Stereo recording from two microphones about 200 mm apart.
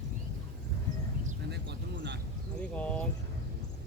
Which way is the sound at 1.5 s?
55° right (ahead or behind).